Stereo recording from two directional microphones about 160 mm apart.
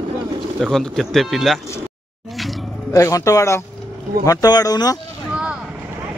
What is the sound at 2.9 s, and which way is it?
A man's voice, 20° left (ahead or behind).